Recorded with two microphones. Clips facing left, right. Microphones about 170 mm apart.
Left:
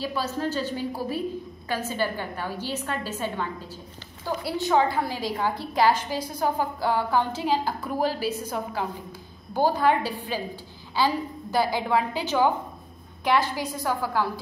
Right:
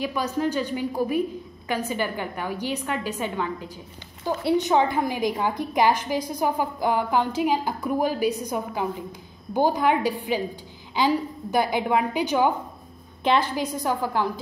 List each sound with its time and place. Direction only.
0.0 s a woman's voice: 15° right (ahead or behind)
11.5 s a woman's voice: 20° right (ahead or behind)